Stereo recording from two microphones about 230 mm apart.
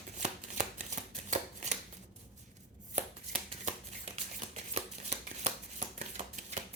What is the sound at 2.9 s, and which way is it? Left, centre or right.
Shuffling cards, right.